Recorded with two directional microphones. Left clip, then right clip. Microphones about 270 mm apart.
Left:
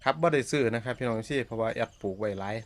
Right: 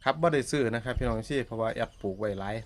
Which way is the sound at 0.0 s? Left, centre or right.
Centre.